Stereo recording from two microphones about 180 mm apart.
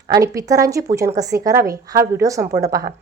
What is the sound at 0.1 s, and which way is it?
A woman's voice, 20° right (ahead or behind).